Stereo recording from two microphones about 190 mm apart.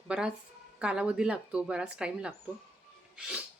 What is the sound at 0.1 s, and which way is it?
Speech, 5° right (ahead or behind).